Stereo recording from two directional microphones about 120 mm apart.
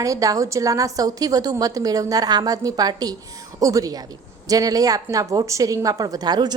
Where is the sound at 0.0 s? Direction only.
30° right (ahead or behind).